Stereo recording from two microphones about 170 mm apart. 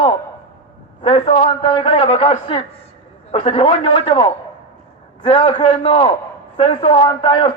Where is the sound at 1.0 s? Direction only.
30° left (ahead or behind).